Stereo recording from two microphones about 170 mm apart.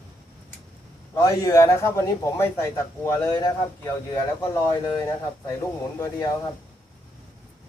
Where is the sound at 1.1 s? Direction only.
20° left (ahead or behind).